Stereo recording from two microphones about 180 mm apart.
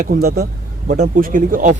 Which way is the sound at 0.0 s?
55° right (ahead or behind).